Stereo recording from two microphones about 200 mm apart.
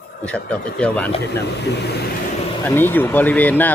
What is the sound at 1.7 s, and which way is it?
Speech, 55° left (ahead or behind).